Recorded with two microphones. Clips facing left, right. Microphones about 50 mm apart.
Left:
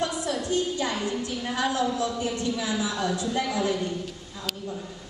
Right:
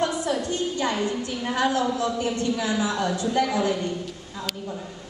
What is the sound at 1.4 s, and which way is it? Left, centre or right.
A woman's voice, centre.